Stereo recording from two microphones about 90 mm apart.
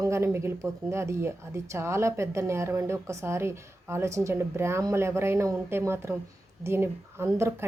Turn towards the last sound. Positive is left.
turn(degrees=-30)  # may be behind; listen again after turning